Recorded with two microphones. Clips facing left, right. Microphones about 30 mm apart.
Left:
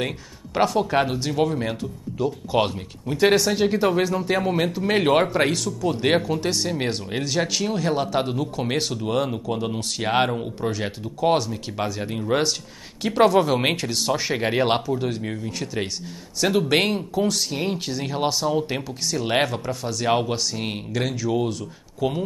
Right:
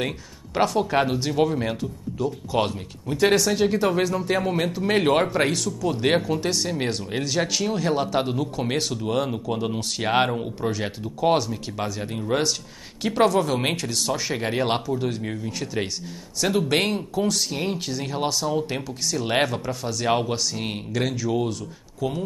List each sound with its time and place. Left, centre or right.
0.6 s speech: centre
2.1 s speech: centre
13.3 s speech: centre
22.0 s speech: left